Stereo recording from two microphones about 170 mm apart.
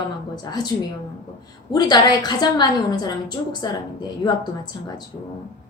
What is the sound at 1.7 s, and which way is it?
A woman's voice, 25° left (ahead or behind).